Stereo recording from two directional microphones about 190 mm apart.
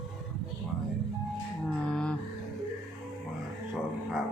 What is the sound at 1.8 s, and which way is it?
Music, 5° left (ahead or behind).